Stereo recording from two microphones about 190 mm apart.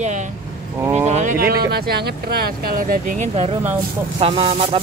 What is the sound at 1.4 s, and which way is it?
Speech, 55° right (ahead or behind).